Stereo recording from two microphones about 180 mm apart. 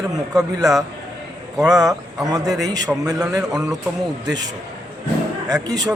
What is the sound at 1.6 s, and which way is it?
A man's voice, 20° right (ahead or behind).